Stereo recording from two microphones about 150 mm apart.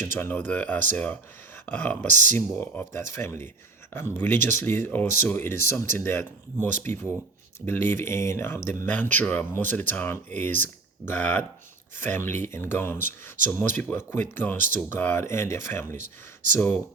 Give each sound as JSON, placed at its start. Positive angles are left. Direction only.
{"t": 0.0, "sound": "speech", "side_deg": 15}
{"t": 4.4, "sound": "speech", "side_deg": -55}
{"t": 4.6, "sound": "speech", "side_deg": 15}
{"t": 16.0, "sound": "speech", "side_deg": -60}